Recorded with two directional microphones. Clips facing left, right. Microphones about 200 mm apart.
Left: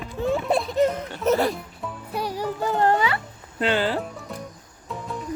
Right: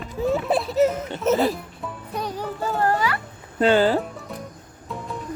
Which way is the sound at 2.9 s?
25° left (ahead or behind).